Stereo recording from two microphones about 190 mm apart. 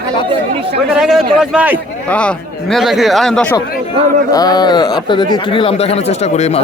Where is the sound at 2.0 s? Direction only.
5° left (ahead or behind).